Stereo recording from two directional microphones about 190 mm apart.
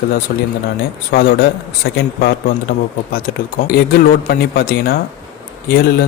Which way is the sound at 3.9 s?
50° left (ahead or behind).